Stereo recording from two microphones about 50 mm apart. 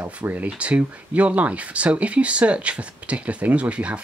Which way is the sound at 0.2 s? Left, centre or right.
Right.